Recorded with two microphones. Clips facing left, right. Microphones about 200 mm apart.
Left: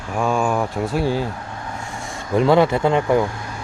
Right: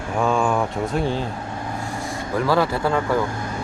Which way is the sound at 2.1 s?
20° left (ahead or behind).